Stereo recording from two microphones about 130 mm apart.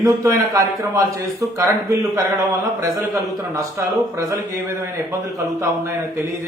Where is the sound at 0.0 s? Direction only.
25° right (ahead or behind).